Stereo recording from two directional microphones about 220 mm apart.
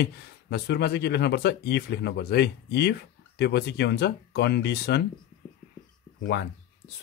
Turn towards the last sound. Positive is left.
turn(degrees=50)  # may be behind; listen again after turning